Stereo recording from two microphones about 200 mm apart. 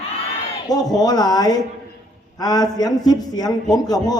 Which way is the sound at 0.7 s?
20° left (ahead or behind).